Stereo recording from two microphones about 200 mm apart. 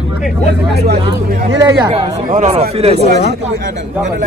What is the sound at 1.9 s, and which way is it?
Speech, 30° right (ahead or behind).